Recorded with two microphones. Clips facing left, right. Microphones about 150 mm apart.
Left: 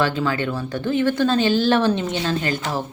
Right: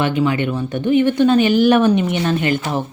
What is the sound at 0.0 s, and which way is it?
A woman's voice, 20° right (ahead or behind).